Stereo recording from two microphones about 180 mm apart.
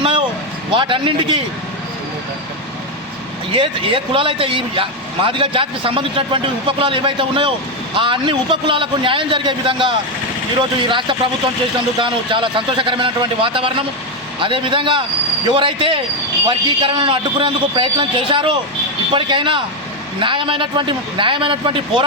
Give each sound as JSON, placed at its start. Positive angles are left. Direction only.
{"t": 0.7, "sound": "speech", "side_deg": -25}
{"t": 3.5, "sound": "speech", "side_deg": -30}